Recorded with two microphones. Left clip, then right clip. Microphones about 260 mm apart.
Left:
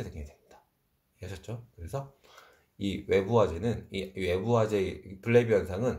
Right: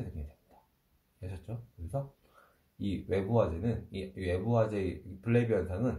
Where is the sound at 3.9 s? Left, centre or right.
Left.